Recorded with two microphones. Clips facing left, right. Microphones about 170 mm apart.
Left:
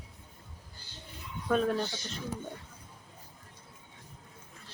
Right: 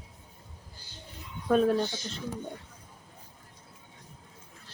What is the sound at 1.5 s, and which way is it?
Speech, 30° right (ahead or behind).